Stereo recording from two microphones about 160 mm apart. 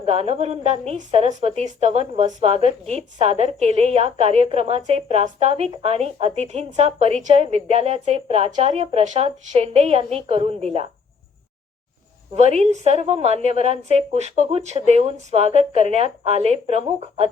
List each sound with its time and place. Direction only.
0.0 s a woman's voice: 40° right (ahead or behind)
12.3 s a woman's voice: 40° right (ahead or behind)